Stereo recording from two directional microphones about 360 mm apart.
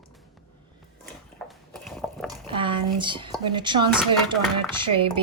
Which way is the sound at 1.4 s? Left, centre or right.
Centre.